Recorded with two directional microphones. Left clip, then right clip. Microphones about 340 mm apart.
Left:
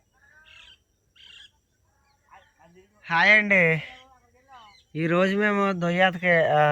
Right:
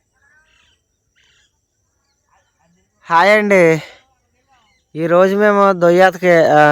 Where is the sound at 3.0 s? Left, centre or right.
Centre.